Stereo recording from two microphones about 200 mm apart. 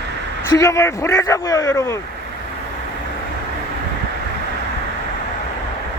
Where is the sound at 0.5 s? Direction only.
15° left (ahead or behind).